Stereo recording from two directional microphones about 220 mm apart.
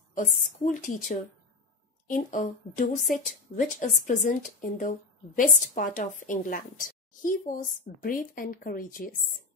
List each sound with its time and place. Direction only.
0.4 s a woman's voice: 35° left (ahead or behind)